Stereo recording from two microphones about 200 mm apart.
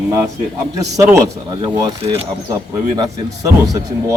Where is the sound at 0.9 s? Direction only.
15° right (ahead or behind).